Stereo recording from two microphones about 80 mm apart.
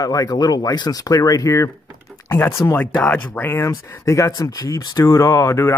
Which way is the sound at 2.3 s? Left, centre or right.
Left.